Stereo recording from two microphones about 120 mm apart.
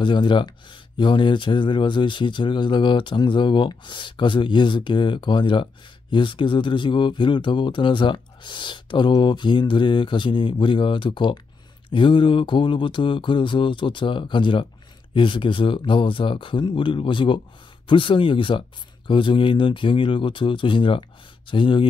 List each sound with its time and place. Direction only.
0.0 s speech: 40° left (ahead or behind)